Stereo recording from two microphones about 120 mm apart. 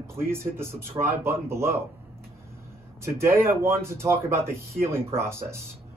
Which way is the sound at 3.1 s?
20° right (ahead or behind).